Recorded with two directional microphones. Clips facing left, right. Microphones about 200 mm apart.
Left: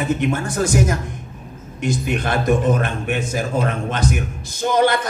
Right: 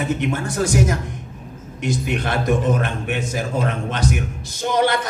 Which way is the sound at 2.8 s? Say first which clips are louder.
Left 1 dB; 45° left (ahead or behind).